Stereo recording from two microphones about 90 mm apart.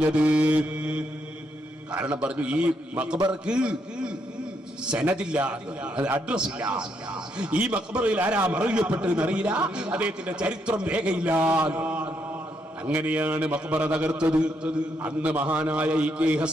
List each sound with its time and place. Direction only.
0.0 s a man's voice: 15° right (ahead or behind)